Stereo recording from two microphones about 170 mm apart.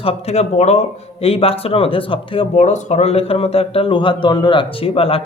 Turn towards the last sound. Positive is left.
turn(degrees=35)  # may be behind; listen again after turning